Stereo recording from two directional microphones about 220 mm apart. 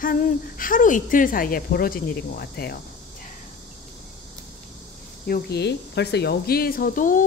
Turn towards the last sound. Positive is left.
turn(degrees=40)  # may be behind; listen again after turning